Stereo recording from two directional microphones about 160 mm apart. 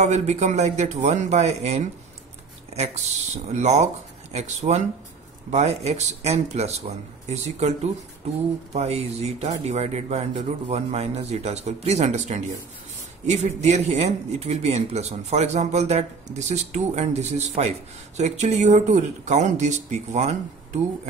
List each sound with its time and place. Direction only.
0.0 s speech: 45° right (ahead or behind)